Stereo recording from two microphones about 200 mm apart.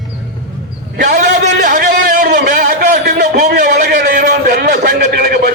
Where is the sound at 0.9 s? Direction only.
55° right (ahead or behind).